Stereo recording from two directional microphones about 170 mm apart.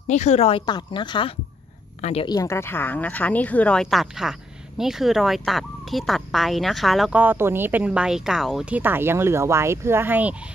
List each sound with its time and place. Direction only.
0.1 s a woman's voice: 40° left (ahead or behind)
2.2 s speech: 20° left (ahead or behind); by 10.3 s 10° right (ahead or behind)